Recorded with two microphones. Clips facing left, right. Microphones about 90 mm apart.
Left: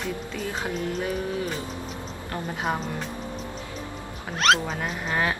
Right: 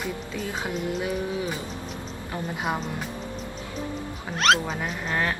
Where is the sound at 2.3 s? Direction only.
5° right (ahead or behind).